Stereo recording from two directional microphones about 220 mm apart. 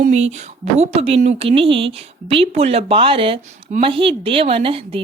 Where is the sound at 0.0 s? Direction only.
30° right (ahead or behind).